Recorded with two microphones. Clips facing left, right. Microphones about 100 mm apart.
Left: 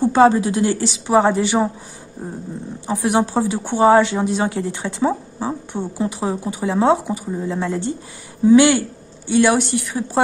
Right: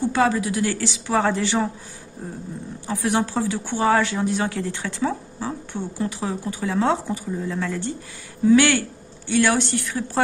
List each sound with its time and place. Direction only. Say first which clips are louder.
0.0 s speech: left 7 dB; 30° left (ahead or behind)
2.9 s speech: left 4 dB; 20° left (ahead or behind)